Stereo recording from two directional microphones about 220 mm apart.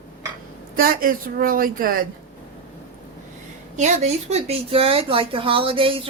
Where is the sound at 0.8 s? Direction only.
40° right (ahead or behind).